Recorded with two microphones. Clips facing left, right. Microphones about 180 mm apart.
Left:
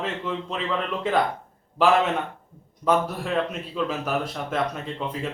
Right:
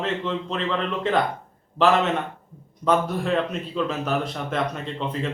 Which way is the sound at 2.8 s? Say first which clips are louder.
Right 1 dB; 5° left (ahead or behind).